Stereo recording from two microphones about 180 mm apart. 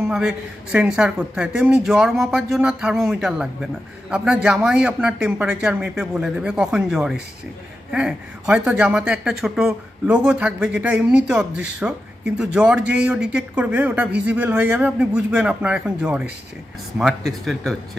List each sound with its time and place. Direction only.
0.1 s speech: 5° right (ahead or behind)